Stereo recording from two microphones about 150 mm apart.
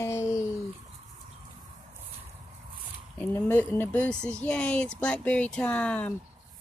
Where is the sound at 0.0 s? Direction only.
20° left (ahead or behind).